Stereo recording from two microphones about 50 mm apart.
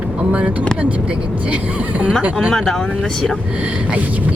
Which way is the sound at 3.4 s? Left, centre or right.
Right.